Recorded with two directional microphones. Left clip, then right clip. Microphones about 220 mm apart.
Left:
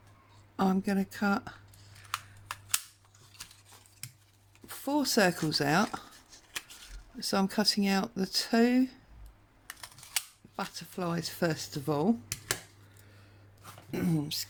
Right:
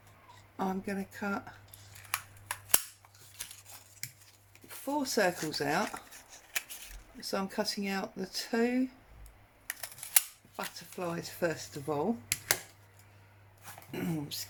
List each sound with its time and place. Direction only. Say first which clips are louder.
0.5 s speech: left 5 dB; 50° left (ahead or behind)
4.7 s speech: left 3 dB; 50° left (ahead or behind)
6.1 s a sound: right 3 dB; centre (ahead or behind)
7.2 s speech: left 4 dB; 50° left (ahead or behind)
9.6 s camera: right 3 dB; 5° right (ahead or behind)
10.6 s speech: left 2 dB; 50° left (ahead or behind)
13.9 s speech: left 5 dB; 50° left (ahead or behind)